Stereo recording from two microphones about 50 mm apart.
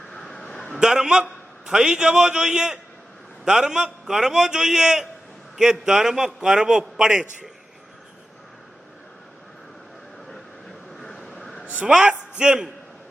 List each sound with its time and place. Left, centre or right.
0.1 s a sound: centre
0.8 s a man's voice: centre
11.0 s vehicle: centre
11.9 s a man's voice: centre